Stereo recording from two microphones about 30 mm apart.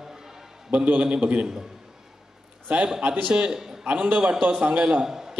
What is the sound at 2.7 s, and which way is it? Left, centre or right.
Speech, right.